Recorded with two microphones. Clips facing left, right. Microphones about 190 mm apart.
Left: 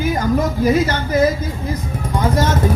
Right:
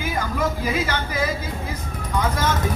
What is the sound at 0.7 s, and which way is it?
Speech, 45° left (ahead or behind).